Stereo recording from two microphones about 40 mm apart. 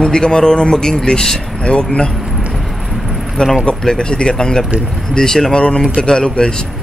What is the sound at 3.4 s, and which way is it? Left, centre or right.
Speech, left.